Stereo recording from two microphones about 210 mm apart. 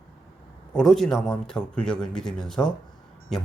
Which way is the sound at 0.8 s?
Centre (ahead or behind).